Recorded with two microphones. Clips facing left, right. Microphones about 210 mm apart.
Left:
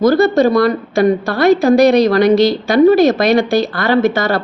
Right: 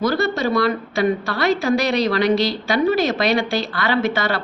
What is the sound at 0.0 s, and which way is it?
A woman's voice, 45° left (ahead or behind).